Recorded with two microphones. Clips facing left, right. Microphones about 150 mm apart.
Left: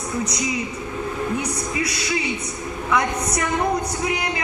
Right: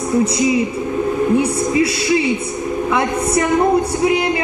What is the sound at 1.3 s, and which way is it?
A woman's voice, 30° right (ahead or behind).